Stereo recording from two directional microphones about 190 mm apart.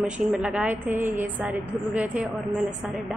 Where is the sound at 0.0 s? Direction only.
5° right (ahead or behind).